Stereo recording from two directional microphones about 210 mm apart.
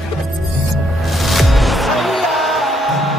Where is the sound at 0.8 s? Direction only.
Centre (ahead or behind).